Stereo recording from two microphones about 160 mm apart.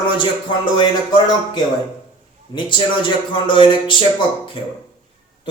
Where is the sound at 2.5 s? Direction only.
30° left (ahead or behind).